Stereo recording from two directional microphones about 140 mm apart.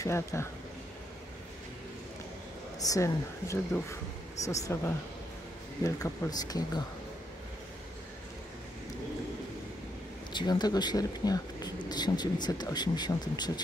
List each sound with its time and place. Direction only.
0.0 s speech: 20° left (ahead or behind)
2.8 s speech: 25° left (ahead or behind)
10.3 s speech: 30° left (ahead or behind)